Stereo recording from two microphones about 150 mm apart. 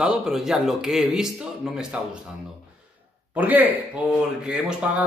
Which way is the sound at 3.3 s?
10° right (ahead or behind).